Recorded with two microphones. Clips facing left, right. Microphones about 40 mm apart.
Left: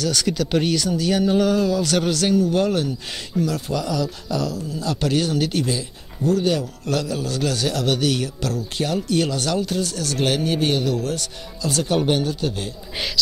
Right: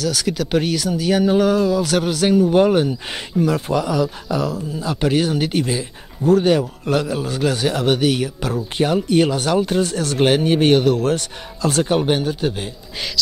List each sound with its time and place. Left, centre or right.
0.0 s speech: centre; by 11.9 s right
11.9 s a man's voice: centre
12.9 s speech: centre